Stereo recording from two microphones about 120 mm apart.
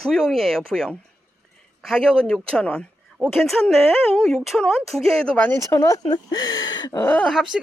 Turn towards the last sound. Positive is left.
turn(degrees=0)  # may be behind; listen again after turning